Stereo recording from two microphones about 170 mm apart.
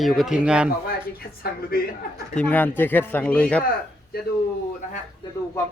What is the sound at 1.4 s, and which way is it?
Speech, 60° left (ahead or behind).